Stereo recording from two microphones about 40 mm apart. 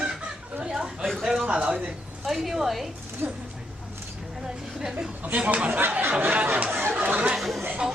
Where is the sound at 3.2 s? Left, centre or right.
Right.